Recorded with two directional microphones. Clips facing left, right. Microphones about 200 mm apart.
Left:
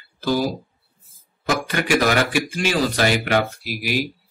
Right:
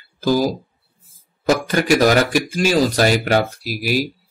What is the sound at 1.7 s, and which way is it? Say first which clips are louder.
Speech: right 4 dB; 40° right (ahead or behind).